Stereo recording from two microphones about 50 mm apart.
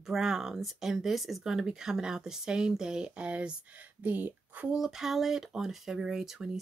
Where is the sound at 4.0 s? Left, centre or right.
Right.